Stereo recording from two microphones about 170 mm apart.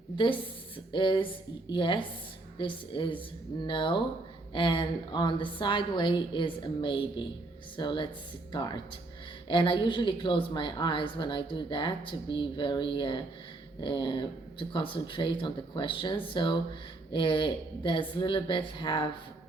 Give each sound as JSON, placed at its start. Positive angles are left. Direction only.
{"t": 0.9, "sound": "speech", "side_deg": 30}